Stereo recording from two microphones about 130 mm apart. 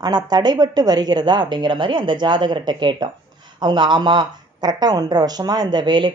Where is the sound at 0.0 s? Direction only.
30° right (ahead or behind).